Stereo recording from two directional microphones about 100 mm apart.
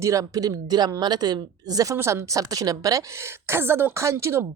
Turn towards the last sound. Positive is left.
turn(degrees=-25)  # may be behind; listen again after turning